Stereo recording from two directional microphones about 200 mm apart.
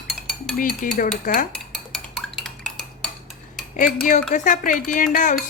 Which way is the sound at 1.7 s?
Centre (ahead or behind).